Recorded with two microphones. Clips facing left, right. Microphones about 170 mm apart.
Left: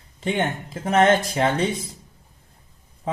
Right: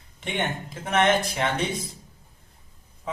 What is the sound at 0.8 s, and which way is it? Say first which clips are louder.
Speech: left 4 dB; 35° left (ahead or behind).